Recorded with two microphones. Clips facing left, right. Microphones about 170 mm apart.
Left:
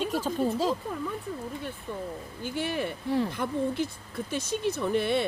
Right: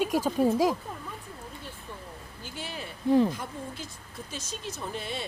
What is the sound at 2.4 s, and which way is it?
Speech, 60° left (ahead or behind).